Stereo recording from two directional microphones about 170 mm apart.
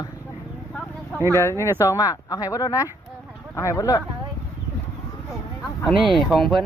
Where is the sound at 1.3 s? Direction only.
15° left (ahead or behind).